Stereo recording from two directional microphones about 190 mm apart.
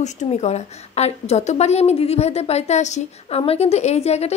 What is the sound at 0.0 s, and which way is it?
A woman's voice, 35° left (ahead or behind).